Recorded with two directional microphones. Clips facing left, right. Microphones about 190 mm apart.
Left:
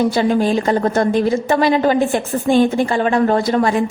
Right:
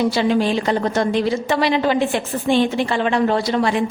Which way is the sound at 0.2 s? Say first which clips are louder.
Left 2 dB; 45° left (ahead or behind).